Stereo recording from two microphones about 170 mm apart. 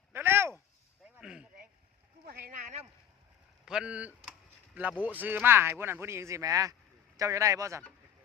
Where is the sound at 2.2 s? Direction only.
65° right (ahead or behind).